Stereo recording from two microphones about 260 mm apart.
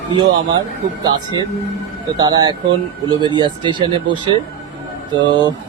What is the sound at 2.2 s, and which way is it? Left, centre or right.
Speech, centre.